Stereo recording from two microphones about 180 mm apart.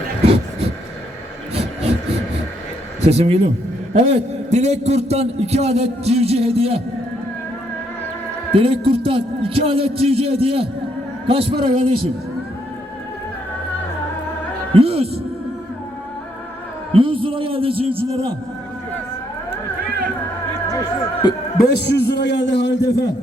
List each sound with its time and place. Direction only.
1.5 s vehicle: 35° right (ahead or behind)
3.0 s a man's voice: 35° right (ahead or behind)
8.5 s a man's voice: 30° right (ahead or behind)
14.7 s a sound: 35° right (ahead or behind)
16.9 s a man's voice: 30° right (ahead or behind)
21.2 s a man's voice: 25° left (ahead or behind)
21.6 s a man's voice: 65° left (ahead or behind)